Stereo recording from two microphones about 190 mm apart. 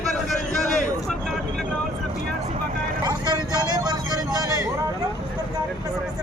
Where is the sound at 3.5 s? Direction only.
20° right (ahead or behind).